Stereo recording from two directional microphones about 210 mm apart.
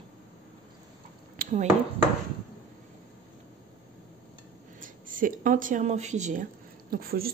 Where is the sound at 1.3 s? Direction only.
35° right (ahead or behind).